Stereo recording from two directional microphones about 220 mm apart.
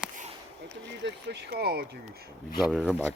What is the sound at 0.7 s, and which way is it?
Speech, 50° right (ahead or behind).